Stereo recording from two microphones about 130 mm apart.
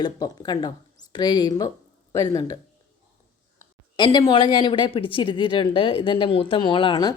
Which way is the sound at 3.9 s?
35° left (ahead or behind).